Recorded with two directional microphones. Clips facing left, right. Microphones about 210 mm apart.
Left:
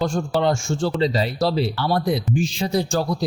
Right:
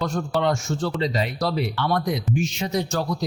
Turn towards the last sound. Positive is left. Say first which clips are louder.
# left 3 dB
turn(degrees=30)  # may be behind; listen again after turning